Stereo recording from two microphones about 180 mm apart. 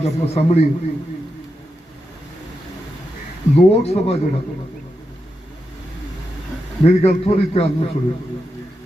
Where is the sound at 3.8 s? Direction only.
35° left (ahead or behind).